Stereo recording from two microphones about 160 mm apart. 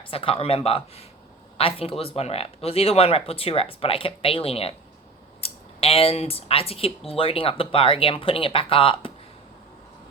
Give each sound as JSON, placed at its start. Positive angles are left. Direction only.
{"t": 0.1, "sound": "speech", "side_deg": 35}